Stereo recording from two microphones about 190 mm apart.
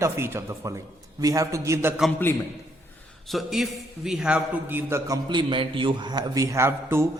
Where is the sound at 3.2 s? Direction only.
Centre (ahead or behind).